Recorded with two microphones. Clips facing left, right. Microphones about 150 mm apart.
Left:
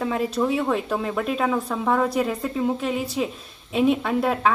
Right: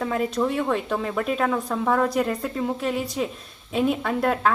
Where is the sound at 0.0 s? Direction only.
5° left (ahead or behind).